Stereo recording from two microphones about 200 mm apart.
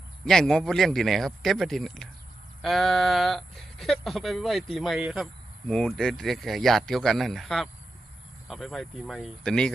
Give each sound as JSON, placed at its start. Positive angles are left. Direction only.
{"t": 0.3, "sound": "speech", "side_deg": 0}